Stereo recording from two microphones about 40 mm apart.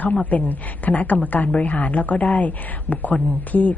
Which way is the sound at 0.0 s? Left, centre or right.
Left.